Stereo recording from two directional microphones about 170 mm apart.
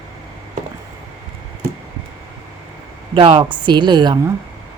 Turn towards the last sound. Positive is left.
turn(degrees=-25)  # may be behind; listen again after turning